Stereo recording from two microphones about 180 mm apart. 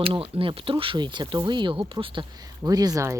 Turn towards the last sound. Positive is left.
turn(degrees=-20)  # may be behind; listen again after turning